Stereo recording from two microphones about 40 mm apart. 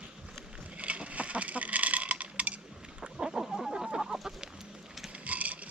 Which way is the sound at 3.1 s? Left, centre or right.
Centre.